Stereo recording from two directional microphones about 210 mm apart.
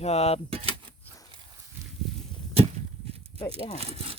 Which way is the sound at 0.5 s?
25° right (ahead or behind).